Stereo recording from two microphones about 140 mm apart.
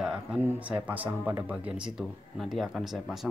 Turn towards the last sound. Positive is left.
turn(degrees=0)  # may be behind; listen again after turning